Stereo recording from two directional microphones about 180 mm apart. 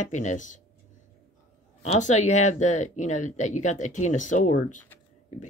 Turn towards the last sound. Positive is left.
turn(degrees=45)  # may be behind; listen again after turning